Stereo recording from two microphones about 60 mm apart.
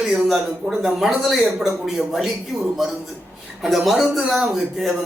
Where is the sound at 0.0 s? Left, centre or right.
Centre.